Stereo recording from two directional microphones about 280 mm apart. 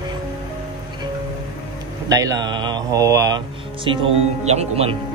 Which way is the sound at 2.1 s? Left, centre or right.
Centre.